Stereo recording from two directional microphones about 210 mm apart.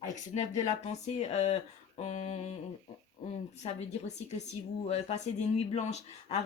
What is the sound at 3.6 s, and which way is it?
Speech, 30° left (ahead or behind).